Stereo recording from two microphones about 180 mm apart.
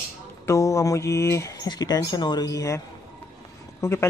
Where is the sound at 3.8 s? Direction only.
15° left (ahead or behind).